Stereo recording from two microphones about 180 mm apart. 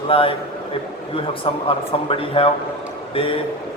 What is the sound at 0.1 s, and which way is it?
Speech, 30° left (ahead or behind).